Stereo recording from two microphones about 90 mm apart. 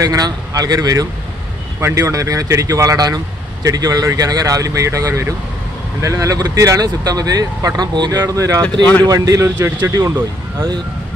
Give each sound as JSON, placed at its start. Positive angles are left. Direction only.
{"t": 0.0, "sound": "speech", "side_deg": -40}
{"t": 1.8, "sound": "speech", "side_deg": -30}
{"t": 8.6, "sound": "speech", "side_deg": 15}
{"t": 9.0, "sound": "speech", "side_deg": -40}